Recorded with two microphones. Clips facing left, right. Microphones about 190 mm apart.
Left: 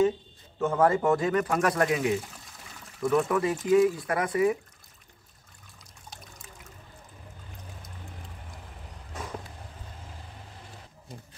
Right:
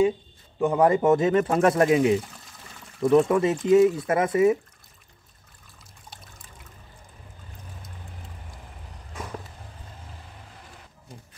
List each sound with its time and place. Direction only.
0.6 s speech: 15° right (ahead or behind)
6.0 s trickle: centre (ahead or behind)